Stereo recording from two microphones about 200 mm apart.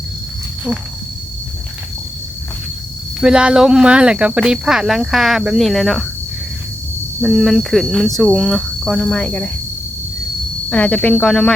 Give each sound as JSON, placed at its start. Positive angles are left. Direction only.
{"t": 3.2, "sound": "speech", "side_deg": -5}
{"t": 7.2, "sound": "speech", "side_deg": 0}
{"t": 10.7, "sound": "speech", "side_deg": 5}